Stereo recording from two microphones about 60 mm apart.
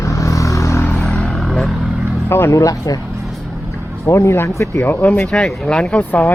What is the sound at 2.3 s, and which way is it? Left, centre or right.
Speech, left.